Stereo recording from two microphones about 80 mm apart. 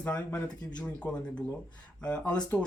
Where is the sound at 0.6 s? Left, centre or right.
Left.